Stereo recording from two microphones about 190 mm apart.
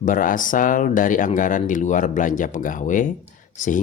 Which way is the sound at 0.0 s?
45° left (ahead or behind).